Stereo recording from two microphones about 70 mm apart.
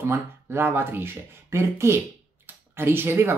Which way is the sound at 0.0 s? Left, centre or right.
Right.